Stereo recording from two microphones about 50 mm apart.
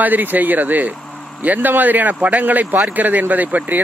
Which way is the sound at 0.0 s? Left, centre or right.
Right.